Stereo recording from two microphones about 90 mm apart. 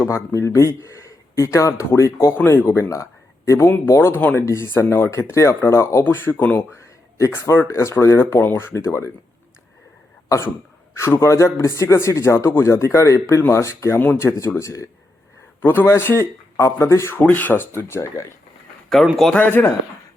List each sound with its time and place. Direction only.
0.0 s speech: 35° left (ahead or behind)
6.7 s a sound: 30° left (ahead or behind)
7.7 s speech: 30° left (ahead or behind)
10.2 s cough: 35° left (ahead or behind)
10.9 s speech: 30° left (ahead or behind)
15.6 s speech: 25° left (ahead or behind)
19.0 s speech: centre (ahead or behind)
19.3 s speech: 20° left (ahead or behind)